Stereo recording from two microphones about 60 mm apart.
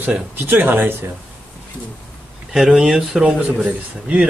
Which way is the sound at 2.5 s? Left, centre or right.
Centre.